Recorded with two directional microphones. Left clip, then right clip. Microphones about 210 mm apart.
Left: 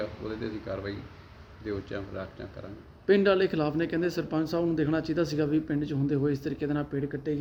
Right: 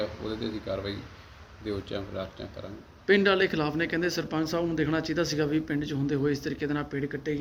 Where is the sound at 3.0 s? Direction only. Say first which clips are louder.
Even; 30° left (ahead or behind).